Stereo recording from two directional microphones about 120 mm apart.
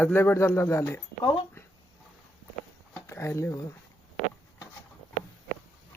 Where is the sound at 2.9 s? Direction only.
20° left (ahead or behind).